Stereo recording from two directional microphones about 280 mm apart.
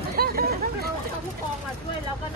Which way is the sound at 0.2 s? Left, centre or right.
Right.